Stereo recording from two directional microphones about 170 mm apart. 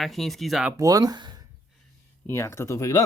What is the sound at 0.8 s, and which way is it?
Speech, 20° right (ahead or behind).